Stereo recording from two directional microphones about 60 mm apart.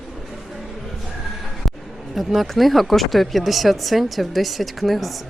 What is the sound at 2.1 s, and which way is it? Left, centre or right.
Speech, centre.